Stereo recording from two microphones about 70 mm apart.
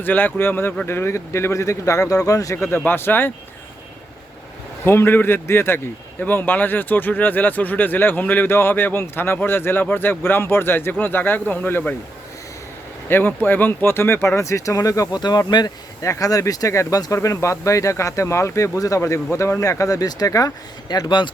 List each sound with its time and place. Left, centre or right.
0.0 s speech: left
2.6 s speech: left
4.9 s a man's voice: left
13.1 s speech: left
15.2 s speech: left
16.0 s speech: left
20.9 s speech: left